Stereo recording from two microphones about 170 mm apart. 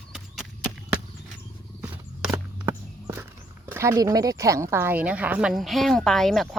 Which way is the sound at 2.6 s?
15° right (ahead or behind).